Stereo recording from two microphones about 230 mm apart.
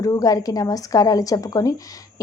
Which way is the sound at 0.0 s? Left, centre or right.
Centre.